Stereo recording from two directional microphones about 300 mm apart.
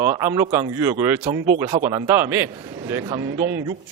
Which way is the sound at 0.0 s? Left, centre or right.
Centre.